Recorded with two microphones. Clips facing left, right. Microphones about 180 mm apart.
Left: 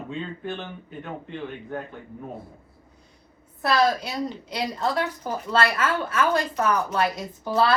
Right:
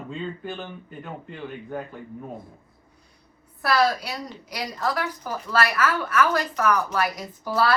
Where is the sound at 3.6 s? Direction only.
25° left (ahead or behind).